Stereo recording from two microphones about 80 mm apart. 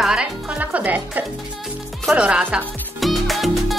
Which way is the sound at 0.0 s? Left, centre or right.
Centre.